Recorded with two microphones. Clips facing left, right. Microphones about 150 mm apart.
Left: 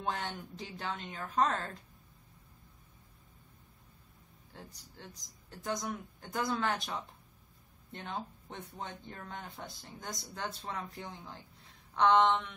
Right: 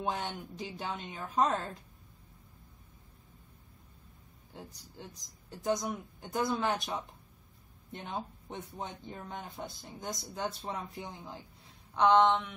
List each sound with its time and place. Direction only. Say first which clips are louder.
0.0 s speech: right 2 dB; 10° right (ahead or behind)
4.5 s speech: right 4 dB; 15° right (ahead or behind)
11.9 s a sound: right 2 dB; 5° right (ahead or behind)